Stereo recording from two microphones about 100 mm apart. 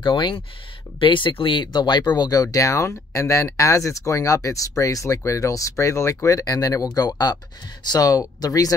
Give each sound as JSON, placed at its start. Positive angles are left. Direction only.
{"t": 0.0, "sound": "speech", "side_deg": 55}